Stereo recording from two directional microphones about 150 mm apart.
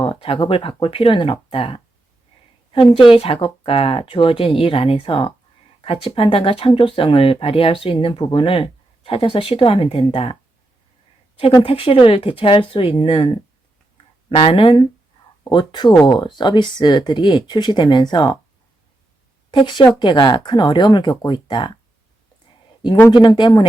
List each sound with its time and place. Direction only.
0.0 s speech: 35° left (ahead or behind)
3.0 s speech: 35° left (ahead or behind)
11.6 s speech: 35° left (ahead or behind)
19.5 s speech: 30° left (ahead or behind)
23.1 s speech: 30° left (ahead or behind)